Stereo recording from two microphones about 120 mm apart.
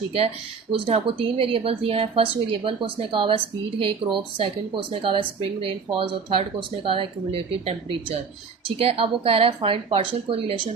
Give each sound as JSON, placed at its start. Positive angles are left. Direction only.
{"t": 0.7, "sound": "a woman's voice", "side_deg": -50}